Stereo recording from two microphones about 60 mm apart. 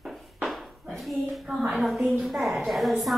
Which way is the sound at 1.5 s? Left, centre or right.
Centre.